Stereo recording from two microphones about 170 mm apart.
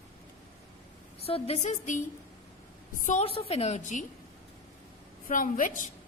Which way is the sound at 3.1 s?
40° left (ahead or behind).